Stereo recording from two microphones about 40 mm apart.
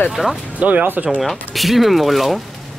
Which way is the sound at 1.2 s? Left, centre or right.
Centre.